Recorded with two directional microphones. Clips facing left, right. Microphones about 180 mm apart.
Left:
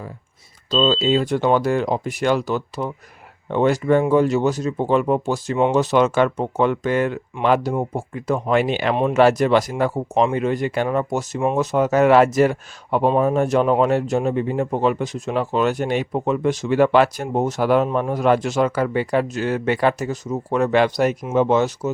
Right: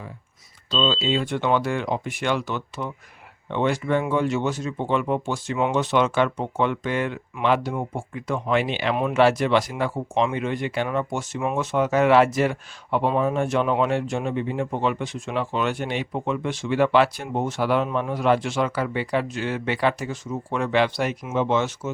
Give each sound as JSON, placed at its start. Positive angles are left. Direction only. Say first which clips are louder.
{"t": 0.7, "sound": "speech", "louder": "left 5 dB", "side_deg": 40}